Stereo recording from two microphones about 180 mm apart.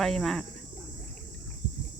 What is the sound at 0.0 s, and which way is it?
Speech, centre (ahead or behind).